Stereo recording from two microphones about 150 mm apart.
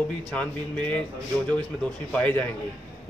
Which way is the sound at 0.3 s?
10° left (ahead or behind).